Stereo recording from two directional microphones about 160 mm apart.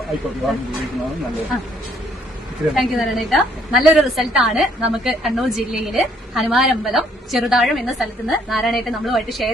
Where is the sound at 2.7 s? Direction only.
Centre (ahead or behind).